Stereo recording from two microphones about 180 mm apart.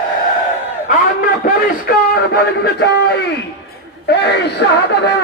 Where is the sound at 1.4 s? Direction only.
55° left (ahead or behind); by 4.8 s 75° left (ahead or behind).